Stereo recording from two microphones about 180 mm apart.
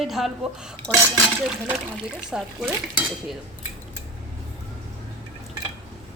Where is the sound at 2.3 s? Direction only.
5° right (ahead or behind).